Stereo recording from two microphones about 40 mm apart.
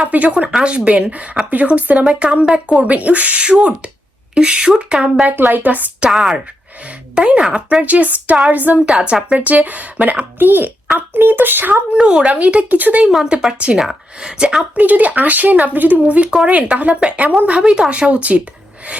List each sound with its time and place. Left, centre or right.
0.0 s speech: right
0.6 s speech: right
5.4 s speech: right
6.1 s speech: centre
6.8 s speech: right
7.8 s speech: right
8.9 s speech: right
10.3 s speech: right
11.9 s speech: right
12.3 s speech: right
13.5 s speech: right
13.7 s speech: centre
14.8 s speech: right
17.6 s speech: centre; by 18.4 s right